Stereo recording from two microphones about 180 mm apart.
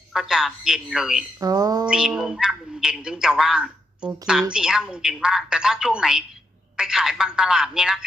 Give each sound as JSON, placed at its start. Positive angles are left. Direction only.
{"t": 0.1, "sound": "a man's voice", "side_deg": 0}
{"t": 1.4, "sound": "music", "side_deg": -20}
{"t": 1.9, "sound": "a man's voice", "side_deg": -5}